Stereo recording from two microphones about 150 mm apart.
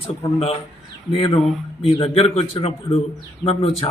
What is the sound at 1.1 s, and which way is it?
Speech, 35° left (ahead or behind).